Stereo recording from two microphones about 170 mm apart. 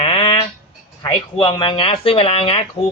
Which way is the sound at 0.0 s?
30° left (ahead or behind).